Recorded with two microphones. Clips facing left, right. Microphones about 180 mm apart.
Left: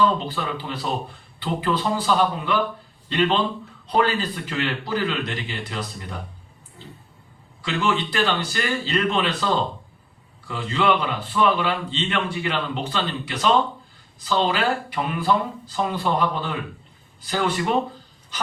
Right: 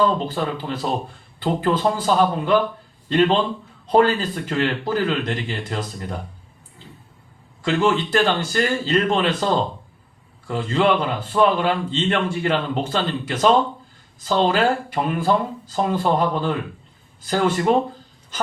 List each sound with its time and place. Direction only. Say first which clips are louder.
0.3 s a man's voice: right 4 dB; 45° right (ahead or behind)
7.6 s a man's voice: right 4 dB; 45° right (ahead or behind)